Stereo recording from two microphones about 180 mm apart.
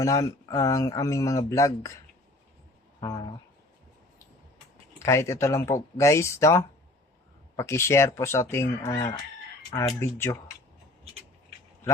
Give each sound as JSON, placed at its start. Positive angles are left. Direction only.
{"t": 0.0, "sound": "speech", "side_deg": 20}
{"t": 5.0, "sound": "speech", "side_deg": 15}